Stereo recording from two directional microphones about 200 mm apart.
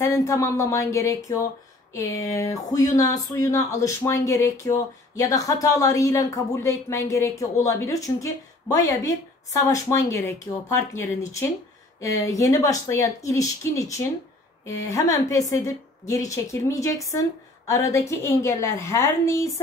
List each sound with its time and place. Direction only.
0.0 s speech: 15° left (ahead or behind)